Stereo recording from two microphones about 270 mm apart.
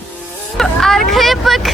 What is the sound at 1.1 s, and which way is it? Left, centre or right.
Vehicle, centre.